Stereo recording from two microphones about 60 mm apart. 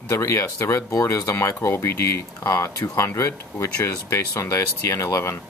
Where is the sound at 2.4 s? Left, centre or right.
Left.